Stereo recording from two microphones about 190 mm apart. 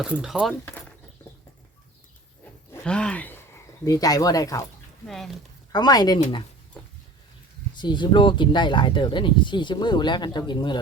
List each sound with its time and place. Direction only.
0.0 s speech: 5° right (ahead or behind)
2.7 s speech: 5° left (ahead or behind)
3.8 s speech: 20° left (ahead or behind)
5.0 s speech: centre (ahead or behind)
5.7 s speech: 20° left (ahead or behind)
7.8 s speech: 25° left (ahead or behind)